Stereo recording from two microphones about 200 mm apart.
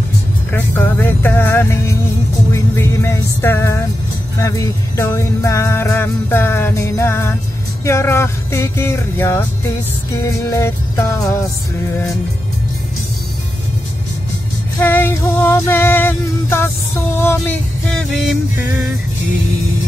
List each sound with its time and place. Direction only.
0.5 s music: 10° left (ahead or behind)
14.8 s music: 10° left (ahead or behind)